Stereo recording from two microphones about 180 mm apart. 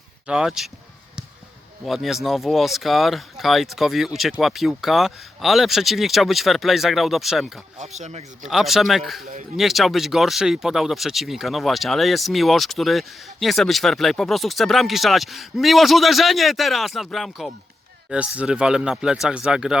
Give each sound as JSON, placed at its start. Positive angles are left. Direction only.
{"t": 0.3, "sound": "speech", "side_deg": -5}
{"t": 1.8, "sound": "speech", "side_deg": 0}
{"t": 7.8, "sound": "speech", "side_deg": -40}
{"t": 8.4, "sound": "speech", "side_deg": 0}